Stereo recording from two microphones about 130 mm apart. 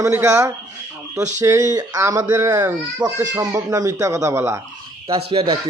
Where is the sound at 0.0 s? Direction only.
20° right (ahead or behind).